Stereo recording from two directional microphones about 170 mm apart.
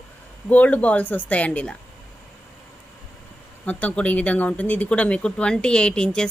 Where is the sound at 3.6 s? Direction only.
10° left (ahead or behind).